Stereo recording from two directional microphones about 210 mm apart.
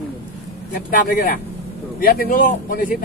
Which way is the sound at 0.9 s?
40° left (ahead or behind).